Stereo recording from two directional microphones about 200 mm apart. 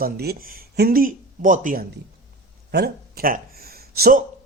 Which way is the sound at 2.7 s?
50° right (ahead or behind).